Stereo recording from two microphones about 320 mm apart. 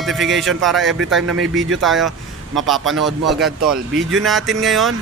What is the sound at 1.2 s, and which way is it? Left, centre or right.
Speech, right.